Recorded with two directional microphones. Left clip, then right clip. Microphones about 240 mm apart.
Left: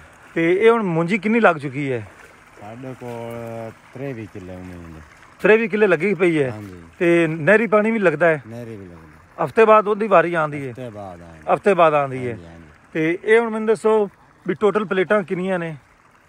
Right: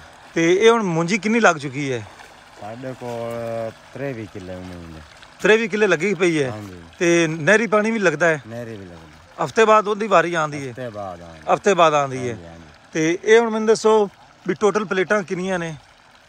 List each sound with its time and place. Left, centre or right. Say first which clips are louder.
0.3 s speech: right 1 dB; centre
2.8 s speech: right 3 dB; right
5.4 s speech: left 1 dB; centre